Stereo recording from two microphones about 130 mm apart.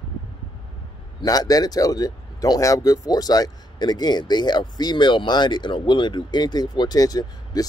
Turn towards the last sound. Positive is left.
turn(degrees=30)  # may be behind; listen again after turning